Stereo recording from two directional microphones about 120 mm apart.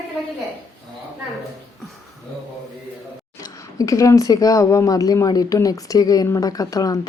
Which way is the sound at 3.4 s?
30° left (ahead or behind).